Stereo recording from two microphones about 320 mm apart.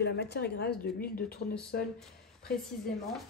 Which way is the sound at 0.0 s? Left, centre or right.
Left.